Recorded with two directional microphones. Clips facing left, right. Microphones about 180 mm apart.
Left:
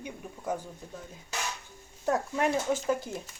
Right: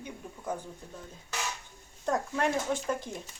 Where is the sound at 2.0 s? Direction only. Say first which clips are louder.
Left 2 dB; 5° left (ahead or behind).